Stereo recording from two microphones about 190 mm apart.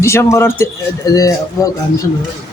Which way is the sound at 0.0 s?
15° left (ahead or behind).